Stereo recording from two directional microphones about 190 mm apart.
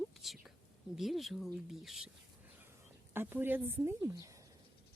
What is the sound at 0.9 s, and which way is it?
Speech, centre (ahead or behind).